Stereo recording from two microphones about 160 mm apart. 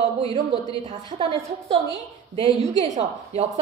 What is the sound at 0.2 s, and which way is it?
A woman's voice, 35° right (ahead or behind).